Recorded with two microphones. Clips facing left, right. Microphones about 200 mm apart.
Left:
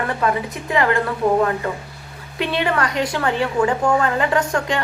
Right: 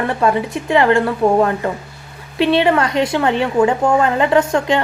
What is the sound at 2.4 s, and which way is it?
A woman's voice, 25° right (ahead or behind).